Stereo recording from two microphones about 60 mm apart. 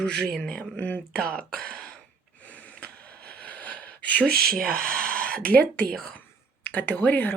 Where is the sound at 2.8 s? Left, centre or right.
Left.